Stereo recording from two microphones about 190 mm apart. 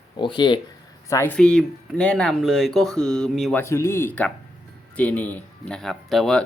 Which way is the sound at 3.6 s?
15° left (ahead or behind).